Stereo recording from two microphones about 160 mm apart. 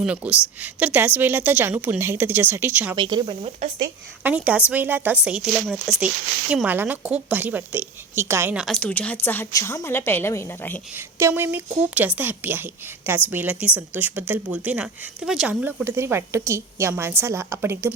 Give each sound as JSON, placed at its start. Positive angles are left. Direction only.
{"t": 0.0, "sound": "speech", "side_deg": -10}
{"t": 2.9, "sound": "speech", "side_deg": -25}
{"t": 4.2, "sound": "speech", "side_deg": -10}
{"t": 8.5, "sound": "a woman's voice", "side_deg": 5}
{"t": 10.9, "sound": "speech", "side_deg": -15}